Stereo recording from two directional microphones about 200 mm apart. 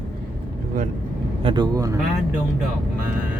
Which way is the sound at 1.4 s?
20° right (ahead or behind).